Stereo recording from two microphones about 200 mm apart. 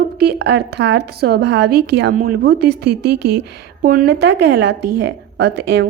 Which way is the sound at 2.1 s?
45° right (ahead or behind).